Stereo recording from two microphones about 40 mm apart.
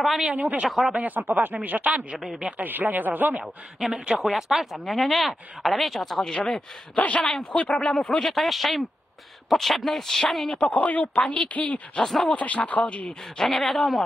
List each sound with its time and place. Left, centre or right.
0.3 s speech: right
1.0 s speech: right
2.1 s speech: centre
2.6 s speech: right
3.9 s speech: right
4.2 s speech: centre
6.3 s speech: centre
7.0 s speech: left
8.2 s speech: centre
10.6 s speech: left
12.0 s speech: centre
12.3 s speech: left
13.4 s speech: centre